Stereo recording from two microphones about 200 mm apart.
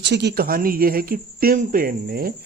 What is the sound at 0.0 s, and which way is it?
Speech, 60° right (ahead or behind).